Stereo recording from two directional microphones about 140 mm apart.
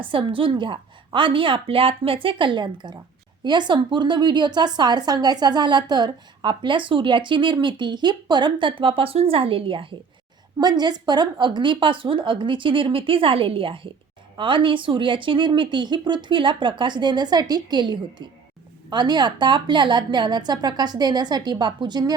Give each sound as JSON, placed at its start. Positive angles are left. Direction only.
{"t": 0.0, "sound": "a woman's voice", "side_deg": -40}